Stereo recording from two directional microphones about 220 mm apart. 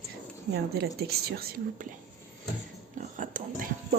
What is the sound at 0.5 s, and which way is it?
Speech, 45° right (ahead or behind).